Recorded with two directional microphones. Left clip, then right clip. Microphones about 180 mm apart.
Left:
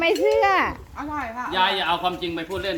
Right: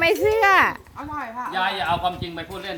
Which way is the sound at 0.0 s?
15° right (ahead or behind).